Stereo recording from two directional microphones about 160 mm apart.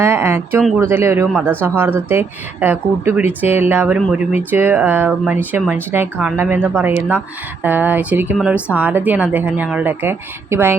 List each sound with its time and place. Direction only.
0.0 s a woman's voice: 15° right (ahead or behind)